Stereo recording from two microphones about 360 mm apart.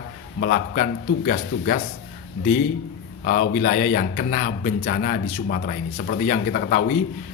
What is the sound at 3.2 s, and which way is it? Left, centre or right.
Speech, left.